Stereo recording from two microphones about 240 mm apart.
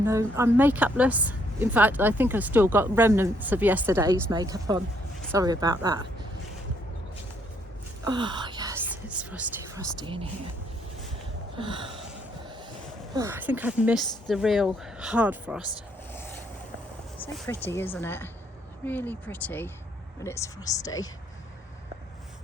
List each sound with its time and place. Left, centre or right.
0.0 s a woman's voice: centre
8.0 s whispering: centre
10.0 s a woman's voice: right
11.5 s a sound: right
13.1 s speech: centre
15.7 s a sound: centre
17.2 s speech: centre